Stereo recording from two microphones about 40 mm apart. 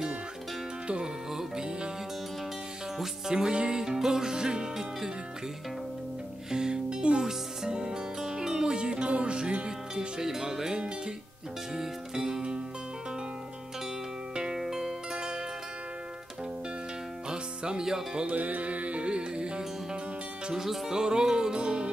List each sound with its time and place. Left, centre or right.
0.8 s music: right
3.3 s music: right
6.5 s music: centre
9.7 s music: centre
14.3 s music: centre
14.6 s music: centre
15.1 s zither: right
17.3 s music: centre
18.3 s music: right
20.6 s music: centre
20.9 s music: centre